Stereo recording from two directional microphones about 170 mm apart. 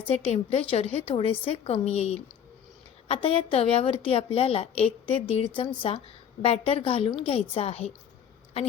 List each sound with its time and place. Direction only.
0.1 s a woman's voice: 35° left (ahead or behind)